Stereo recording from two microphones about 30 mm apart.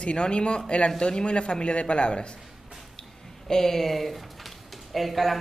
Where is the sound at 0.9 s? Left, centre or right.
Left.